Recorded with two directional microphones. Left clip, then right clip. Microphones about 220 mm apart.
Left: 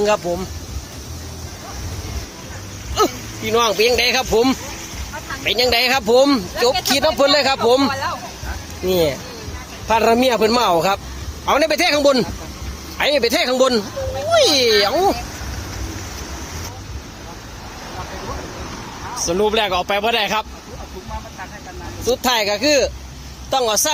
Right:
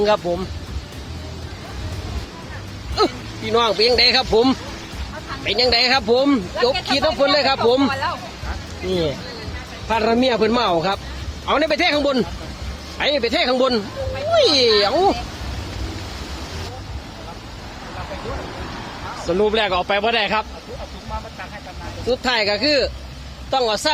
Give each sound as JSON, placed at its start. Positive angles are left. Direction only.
{"t": 0.0, "sound": "speech", "side_deg": 10}
{"t": 2.9, "sound": "speech", "side_deg": 5}
{"t": 19.3, "sound": "speech", "side_deg": 15}
{"t": 22.0, "sound": "speech", "side_deg": 15}